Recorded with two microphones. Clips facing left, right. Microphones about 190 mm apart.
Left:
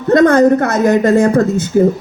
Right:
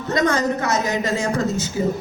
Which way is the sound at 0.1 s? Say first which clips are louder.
Left 12 dB; 55° left (ahead or behind).